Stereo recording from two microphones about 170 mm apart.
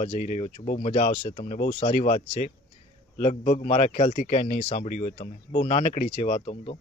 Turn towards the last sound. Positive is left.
turn(degrees=35)  # may be behind; listen again after turning